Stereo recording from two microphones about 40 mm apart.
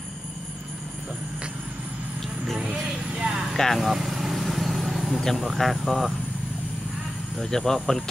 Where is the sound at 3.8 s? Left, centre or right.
Centre.